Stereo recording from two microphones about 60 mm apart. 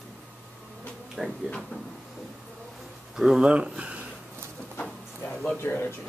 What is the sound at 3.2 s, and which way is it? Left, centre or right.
Speech, centre.